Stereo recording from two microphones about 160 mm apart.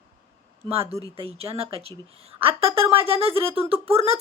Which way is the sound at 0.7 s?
40° right (ahead or behind).